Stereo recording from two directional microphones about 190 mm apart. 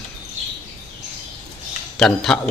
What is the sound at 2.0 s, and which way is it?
Speech, 5° left (ahead or behind).